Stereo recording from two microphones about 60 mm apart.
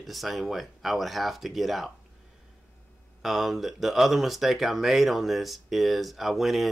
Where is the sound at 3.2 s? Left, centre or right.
Centre.